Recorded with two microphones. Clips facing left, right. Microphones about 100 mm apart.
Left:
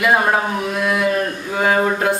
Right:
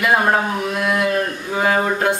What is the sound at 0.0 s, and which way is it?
A woman's voice, centre (ahead or behind).